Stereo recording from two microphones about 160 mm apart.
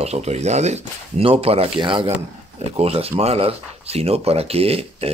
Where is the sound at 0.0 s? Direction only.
40° right (ahead or behind).